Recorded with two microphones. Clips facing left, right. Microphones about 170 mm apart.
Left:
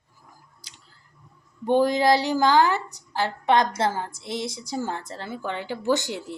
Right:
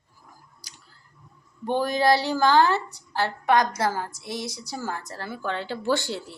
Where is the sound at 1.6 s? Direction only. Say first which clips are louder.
Left 3 dB; 20° left (ahead or behind).